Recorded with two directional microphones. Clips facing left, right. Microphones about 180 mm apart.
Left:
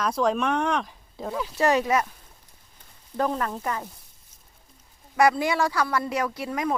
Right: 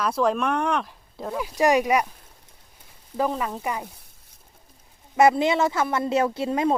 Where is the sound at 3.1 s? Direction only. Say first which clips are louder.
Right 1 dB; 5° right (ahead or behind).